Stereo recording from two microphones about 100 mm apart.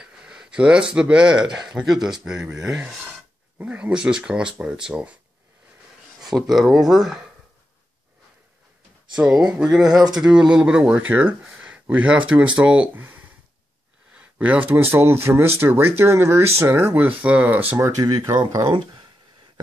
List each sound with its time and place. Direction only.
0.0 s speech: 10° right (ahead or behind)
3.1 s speech: 15° right (ahead or behind)
6.2 s speech: 5° right (ahead or behind)
9.4 s a man's voice: 10° right (ahead or behind)
17.8 s speech: 40° right (ahead or behind)